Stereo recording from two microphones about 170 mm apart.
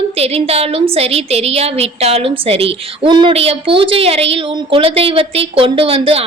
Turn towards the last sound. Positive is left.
turn(degrees=-35)  # may be behind; listen again after turning